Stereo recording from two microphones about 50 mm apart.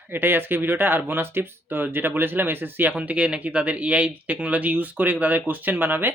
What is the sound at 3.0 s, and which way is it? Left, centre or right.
Speech, right.